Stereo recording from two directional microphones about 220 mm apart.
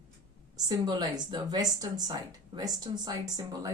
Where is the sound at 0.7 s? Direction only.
20° right (ahead or behind).